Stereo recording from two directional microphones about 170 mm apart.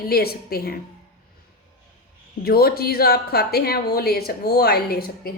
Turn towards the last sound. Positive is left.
turn(degrees=65)  # may be behind; listen again after turning